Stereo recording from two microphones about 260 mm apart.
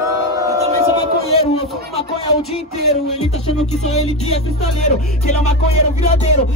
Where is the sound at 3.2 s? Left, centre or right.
Left.